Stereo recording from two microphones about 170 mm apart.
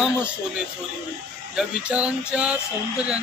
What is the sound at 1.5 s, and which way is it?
Speech, 5° right (ahead or behind).